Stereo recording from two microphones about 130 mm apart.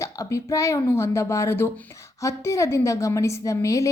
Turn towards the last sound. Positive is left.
turn(degrees=25)  # may be behind; listen again after turning